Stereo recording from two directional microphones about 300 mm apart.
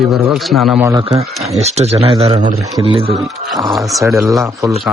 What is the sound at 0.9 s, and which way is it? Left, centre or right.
Speech, centre.